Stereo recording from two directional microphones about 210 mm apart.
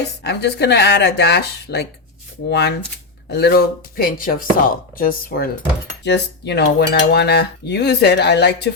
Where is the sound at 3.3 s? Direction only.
50° left (ahead or behind).